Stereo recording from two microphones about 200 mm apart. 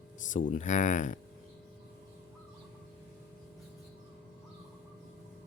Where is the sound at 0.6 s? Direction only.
35° left (ahead or behind).